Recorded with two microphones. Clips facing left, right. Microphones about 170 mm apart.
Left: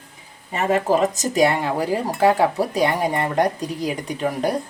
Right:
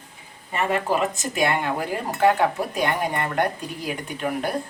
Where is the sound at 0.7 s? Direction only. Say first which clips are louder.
Left 6 dB; 40° left (ahead or behind).